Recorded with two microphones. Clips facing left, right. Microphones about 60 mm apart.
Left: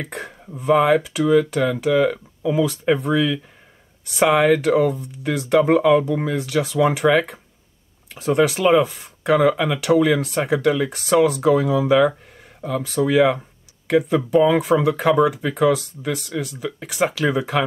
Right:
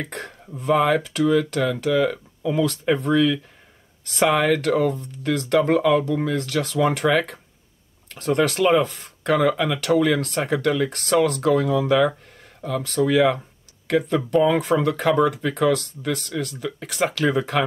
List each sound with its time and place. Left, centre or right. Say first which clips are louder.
0.0 s speech: left 1 dB; centre